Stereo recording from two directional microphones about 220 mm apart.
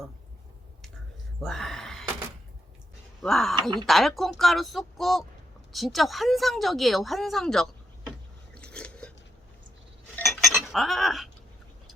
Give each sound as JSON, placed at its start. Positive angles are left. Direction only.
{"t": 1.4, "sound": "a sound", "side_deg": 0}
{"t": 3.2, "sound": "speech", "side_deg": 0}
{"t": 3.5, "sound": "speech", "side_deg": -20}
{"t": 3.8, "sound": "speech", "side_deg": 0}
{"t": 8.5, "sound": "biting", "side_deg": 5}
{"t": 10.2, "sound": "cutlery", "side_deg": 0}